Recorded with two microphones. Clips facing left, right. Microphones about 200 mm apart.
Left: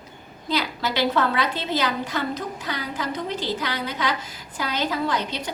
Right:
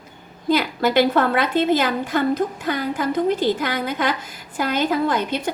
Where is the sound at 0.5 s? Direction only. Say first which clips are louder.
Right 8 dB; 50° right (ahead or behind).